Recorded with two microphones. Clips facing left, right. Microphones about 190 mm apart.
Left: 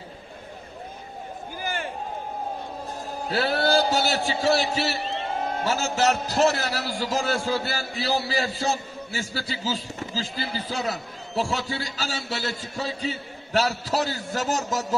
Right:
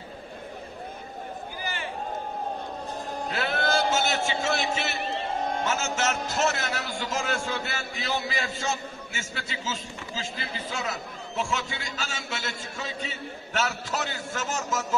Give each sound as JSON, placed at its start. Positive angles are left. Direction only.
{"t": 1.6, "sound": "run", "side_deg": 50}
{"t": 3.3, "sound": "a man's voice", "side_deg": 35}